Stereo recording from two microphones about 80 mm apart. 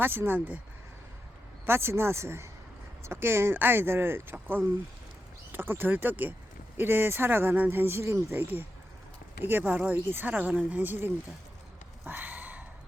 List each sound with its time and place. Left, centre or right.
0.0 s speech: right
1.6 s speech: right
12.0 s a sound: right